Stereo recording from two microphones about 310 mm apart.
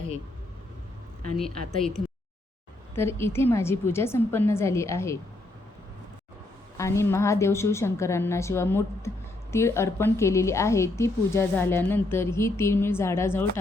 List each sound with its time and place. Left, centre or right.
1.4 s a woman's voice: centre
6.7 s a woman's voice: centre